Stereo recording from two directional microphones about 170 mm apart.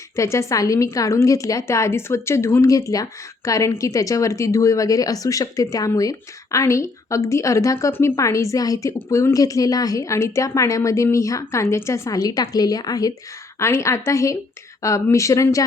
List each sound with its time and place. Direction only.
0.2 s a woman's voice: 15° left (ahead or behind)